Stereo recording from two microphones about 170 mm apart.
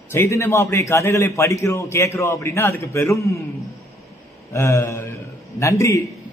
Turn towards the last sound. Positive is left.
turn(degrees=15)  # may be behind; listen again after turning